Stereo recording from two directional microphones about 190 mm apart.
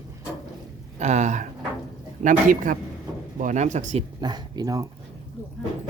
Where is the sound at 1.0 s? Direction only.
40° right (ahead or behind).